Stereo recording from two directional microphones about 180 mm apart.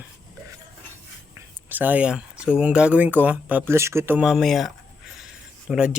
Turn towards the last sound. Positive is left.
turn(degrees=-5)  # may be behind; listen again after turning